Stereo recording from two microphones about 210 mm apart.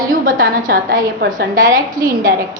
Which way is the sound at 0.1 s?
40° right (ahead or behind).